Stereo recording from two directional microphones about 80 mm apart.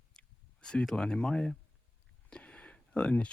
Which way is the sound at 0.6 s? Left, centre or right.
Centre.